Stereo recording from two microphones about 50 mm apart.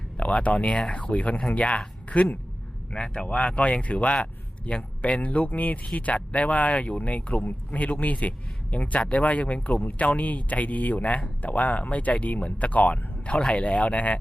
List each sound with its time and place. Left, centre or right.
0.2 s speech: left
2.9 s speech: centre